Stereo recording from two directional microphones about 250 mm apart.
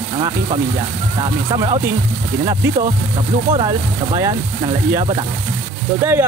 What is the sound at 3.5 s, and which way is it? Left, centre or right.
Speech, centre.